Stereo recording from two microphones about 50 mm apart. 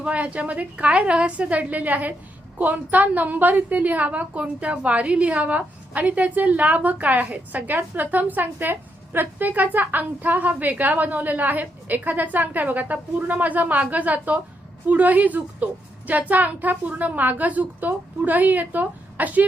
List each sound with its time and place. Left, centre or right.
0.0 s a woman's voice: right